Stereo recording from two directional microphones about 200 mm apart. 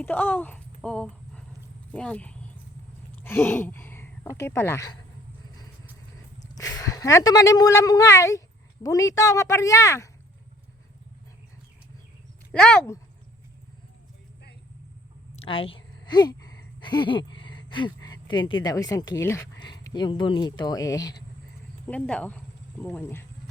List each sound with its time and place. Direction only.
0.0 s speech: 10° left (ahead or behind)
6.6 s speech: 15° left (ahead or behind)
12.5 s speech: 5° left (ahead or behind)
15.4 s a sound: 25° left (ahead or behind)
18.6 s speech: 20° left (ahead or behind)
21.8 s speech: 5° left (ahead or behind)